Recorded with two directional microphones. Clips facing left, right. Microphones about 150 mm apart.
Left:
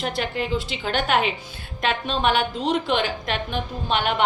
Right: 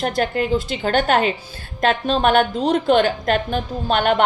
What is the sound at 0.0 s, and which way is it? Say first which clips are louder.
A woman's voice: right 6 dB; 45° right (ahead or behind).